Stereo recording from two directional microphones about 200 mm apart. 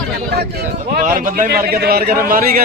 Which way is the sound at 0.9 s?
45° right (ahead or behind).